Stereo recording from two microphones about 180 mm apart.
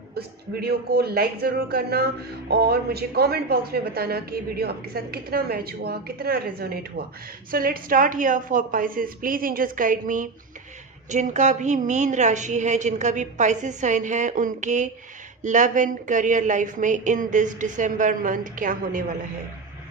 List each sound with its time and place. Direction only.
0.1 s a woman's voice: 60° right (ahead or behind)